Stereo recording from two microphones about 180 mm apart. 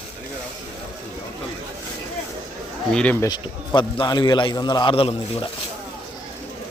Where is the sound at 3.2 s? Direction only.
25° left (ahead or behind).